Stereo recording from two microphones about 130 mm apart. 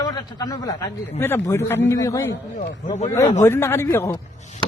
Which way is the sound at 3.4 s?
20° left (ahead or behind).